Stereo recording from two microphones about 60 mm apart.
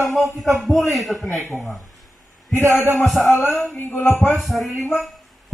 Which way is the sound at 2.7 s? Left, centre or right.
Right.